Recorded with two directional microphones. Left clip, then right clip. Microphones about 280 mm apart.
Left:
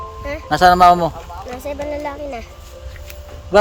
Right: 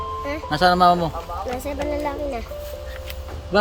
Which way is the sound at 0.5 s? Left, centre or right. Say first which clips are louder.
Left 6 dB; centre.